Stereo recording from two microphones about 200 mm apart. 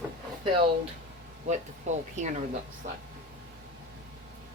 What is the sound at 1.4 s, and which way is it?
Speech, 35° right (ahead or behind).